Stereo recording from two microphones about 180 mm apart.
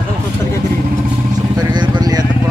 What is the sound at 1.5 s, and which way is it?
Vehicle, 25° right (ahead or behind).